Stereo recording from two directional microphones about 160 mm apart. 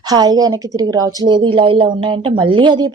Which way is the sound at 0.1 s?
25° right (ahead or behind).